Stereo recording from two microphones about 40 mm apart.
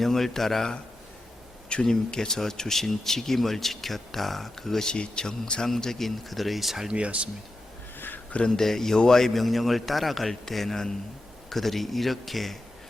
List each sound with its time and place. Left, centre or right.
0.0 s speech: centre
1.9 s speech: centre
4.9 s a man's voice: centre
6.9 s speech: right
7.9 s a sound: left
8.4 s a man's voice: centre